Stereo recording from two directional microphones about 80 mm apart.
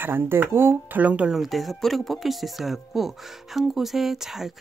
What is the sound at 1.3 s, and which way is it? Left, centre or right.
Speech, centre.